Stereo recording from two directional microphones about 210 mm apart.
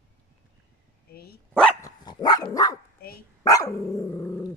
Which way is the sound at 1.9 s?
20° left (ahead or behind).